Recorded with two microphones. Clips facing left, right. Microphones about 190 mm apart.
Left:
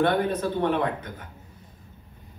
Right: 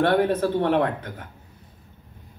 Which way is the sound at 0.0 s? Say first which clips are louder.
Right 3 dB; 60° right (ahead or behind).